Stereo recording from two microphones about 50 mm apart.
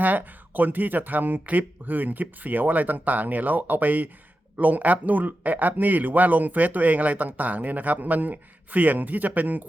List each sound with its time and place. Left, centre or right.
0.0 s speech: right